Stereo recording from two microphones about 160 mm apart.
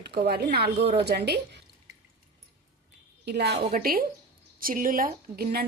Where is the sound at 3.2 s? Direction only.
90° right.